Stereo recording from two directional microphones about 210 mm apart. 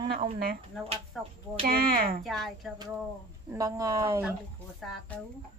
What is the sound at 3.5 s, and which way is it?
Speech, 15° right (ahead or behind).